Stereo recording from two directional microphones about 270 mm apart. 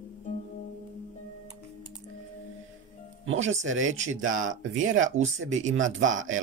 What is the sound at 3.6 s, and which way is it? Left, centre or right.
Speech, right.